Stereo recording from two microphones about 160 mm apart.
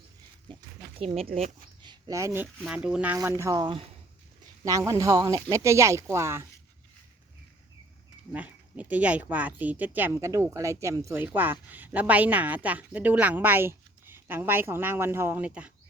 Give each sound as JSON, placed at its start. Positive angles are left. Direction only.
{"t": 0.9, "sound": "speech", "side_deg": -40}
{"t": 3.2, "sound": "speech", "side_deg": -20}
{"t": 8.3, "sound": "speech", "side_deg": -10}